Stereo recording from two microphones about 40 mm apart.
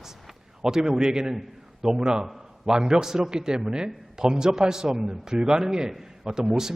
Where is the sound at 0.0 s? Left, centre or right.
Centre.